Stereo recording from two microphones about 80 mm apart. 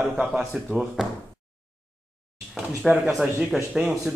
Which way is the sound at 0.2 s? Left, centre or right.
Centre.